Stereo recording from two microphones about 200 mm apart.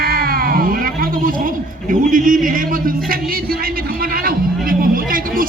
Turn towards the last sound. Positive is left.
turn(degrees=-45)  # may be behind; listen again after turning